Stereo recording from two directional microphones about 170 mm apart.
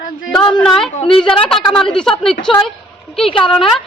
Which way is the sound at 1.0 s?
35° left (ahead or behind).